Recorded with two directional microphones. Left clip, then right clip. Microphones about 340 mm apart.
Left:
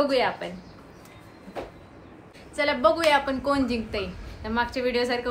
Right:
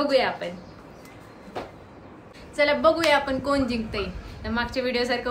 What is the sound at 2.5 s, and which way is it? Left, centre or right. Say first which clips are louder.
A woman's voice: right 2 dB; centre.